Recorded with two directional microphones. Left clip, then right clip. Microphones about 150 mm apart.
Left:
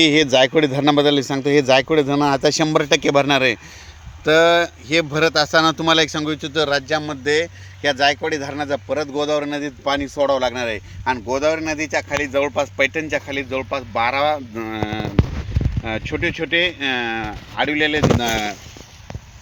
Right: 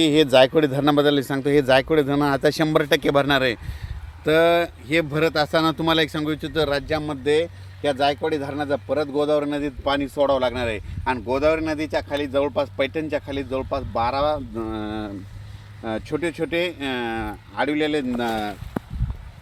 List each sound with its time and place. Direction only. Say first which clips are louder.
0.0 s speech: left 2 dB; 30° left (ahead or behind)